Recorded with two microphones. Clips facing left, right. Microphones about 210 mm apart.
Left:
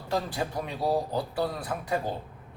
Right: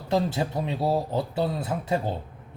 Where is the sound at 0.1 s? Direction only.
25° right (ahead or behind).